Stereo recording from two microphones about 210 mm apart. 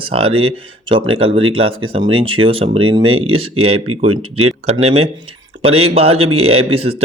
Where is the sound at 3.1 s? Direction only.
85° right.